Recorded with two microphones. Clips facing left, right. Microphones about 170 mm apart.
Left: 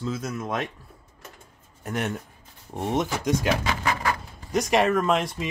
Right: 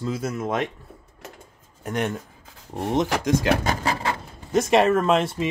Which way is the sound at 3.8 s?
30° right (ahead or behind).